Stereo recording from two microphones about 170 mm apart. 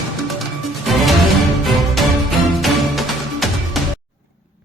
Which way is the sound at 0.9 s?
Centre (ahead or behind).